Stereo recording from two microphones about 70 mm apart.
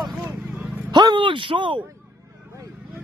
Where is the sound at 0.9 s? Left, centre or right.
Right.